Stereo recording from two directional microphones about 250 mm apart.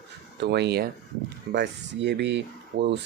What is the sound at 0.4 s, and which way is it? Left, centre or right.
Speech, right.